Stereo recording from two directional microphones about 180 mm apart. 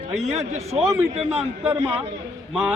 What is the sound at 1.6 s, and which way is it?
Speech, 10° right (ahead or behind).